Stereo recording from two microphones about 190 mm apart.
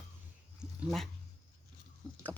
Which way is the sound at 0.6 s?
Centre (ahead or behind).